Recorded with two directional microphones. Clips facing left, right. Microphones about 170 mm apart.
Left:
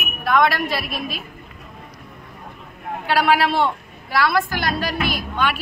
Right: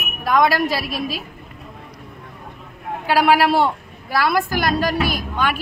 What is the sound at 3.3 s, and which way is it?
A man's voice, 40° right (ahead or behind).